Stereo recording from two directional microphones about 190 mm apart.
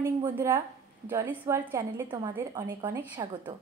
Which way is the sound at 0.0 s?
10° right (ahead or behind).